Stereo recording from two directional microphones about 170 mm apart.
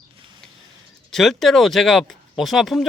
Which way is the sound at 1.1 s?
Centre (ahead or behind).